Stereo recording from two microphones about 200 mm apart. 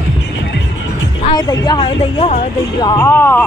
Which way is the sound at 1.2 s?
20° left (ahead or behind).